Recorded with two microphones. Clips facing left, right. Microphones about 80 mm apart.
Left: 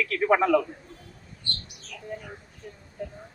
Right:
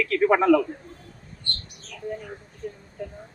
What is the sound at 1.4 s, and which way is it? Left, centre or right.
Bird, right.